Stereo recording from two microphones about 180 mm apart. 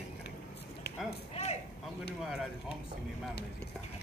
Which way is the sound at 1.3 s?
35° left (ahead or behind).